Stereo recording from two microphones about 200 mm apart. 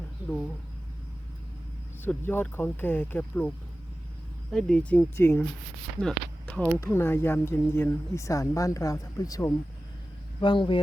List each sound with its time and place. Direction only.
2.0 s speech: 10° left (ahead or behind)
4.5 s speech: centre (ahead or behind); by 10.8 s 25° left (ahead or behind)